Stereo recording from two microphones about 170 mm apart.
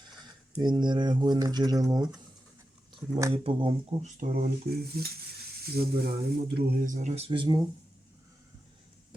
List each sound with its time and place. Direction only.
0.0 s speech: 25° right (ahead or behind)
3.3 s speech: 30° right (ahead or behind)
4.2 s speech: 60° right (ahead or behind); by 7.6 s 25° right (ahead or behind)